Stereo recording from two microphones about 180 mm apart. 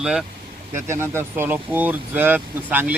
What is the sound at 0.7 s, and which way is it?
Speech, 15° right (ahead or behind).